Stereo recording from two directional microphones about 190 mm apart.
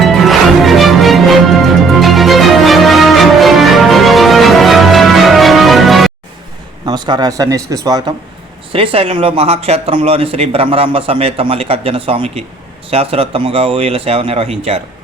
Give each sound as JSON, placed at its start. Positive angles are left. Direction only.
{"t": 0.0, "sound": "music", "side_deg": 0}
{"t": 6.8, "sound": "speech", "side_deg": -20}
{"t": 8.7, "sound": "speech", "side_deg": -30}